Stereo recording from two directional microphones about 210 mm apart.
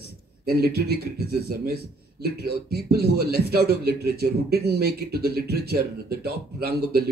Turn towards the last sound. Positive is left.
turn(degrees=-50)  # may be behind; listen again after turning